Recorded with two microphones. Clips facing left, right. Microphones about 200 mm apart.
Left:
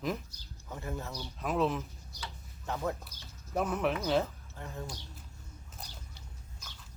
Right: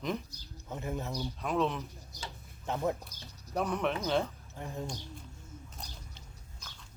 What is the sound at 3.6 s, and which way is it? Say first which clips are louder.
Speech: left 1 dB; 5° left (ahead or behind).